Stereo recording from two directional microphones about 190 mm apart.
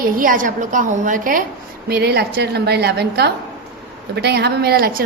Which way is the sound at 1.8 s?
55° right (ahead or behind).